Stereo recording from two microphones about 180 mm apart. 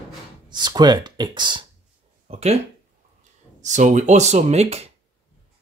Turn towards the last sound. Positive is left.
turn(degrees=-35)  # may be behind; listen again after turning